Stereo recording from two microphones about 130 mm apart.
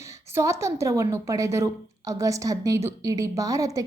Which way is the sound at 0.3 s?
25° right (ahead or behind).